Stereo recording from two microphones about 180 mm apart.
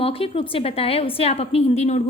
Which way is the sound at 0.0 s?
30° left (ahead or behind).